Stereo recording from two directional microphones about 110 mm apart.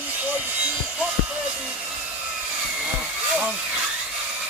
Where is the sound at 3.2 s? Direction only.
15° right (ahead or behind).